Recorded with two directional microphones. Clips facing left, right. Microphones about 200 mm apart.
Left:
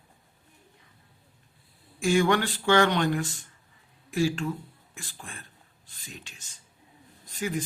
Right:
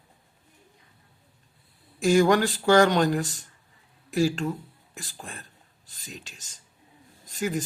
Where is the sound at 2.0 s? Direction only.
40° right (ahead or behind).